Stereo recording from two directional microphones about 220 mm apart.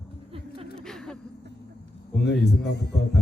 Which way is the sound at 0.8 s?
5° left (ahead or behind).